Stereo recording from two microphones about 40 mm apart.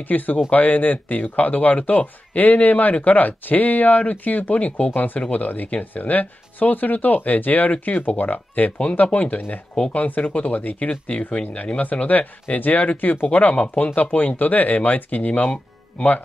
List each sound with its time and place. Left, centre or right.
0.0 s speech: left
10.9 s speech: left